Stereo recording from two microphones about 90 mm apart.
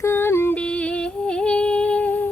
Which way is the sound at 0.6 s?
15° left (ahead or behind).